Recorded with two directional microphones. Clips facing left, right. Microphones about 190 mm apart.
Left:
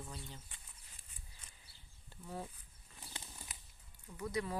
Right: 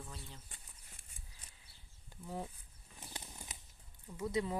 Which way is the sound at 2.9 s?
20° right (ahead or behind).